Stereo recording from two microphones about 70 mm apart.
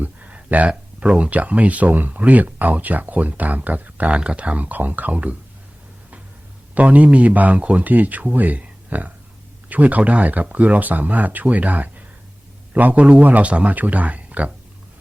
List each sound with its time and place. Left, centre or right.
0.0 s speech: right
6.7 s speech: right